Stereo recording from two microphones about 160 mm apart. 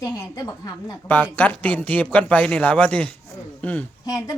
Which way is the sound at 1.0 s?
10° left (ahead or behind).